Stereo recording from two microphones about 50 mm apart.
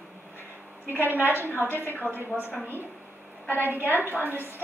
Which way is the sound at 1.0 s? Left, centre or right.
Right.